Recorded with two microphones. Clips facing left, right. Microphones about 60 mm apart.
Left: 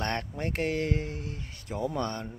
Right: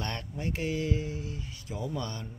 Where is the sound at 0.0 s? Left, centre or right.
Left.